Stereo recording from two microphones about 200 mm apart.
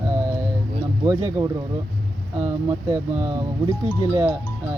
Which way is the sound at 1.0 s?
15° right (ahead or behind).